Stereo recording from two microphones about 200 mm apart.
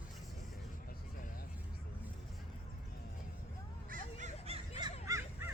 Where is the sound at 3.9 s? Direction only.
35° right (ahead or behind).